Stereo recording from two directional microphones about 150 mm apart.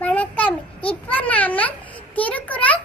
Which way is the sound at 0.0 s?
10° left (ahead or behind).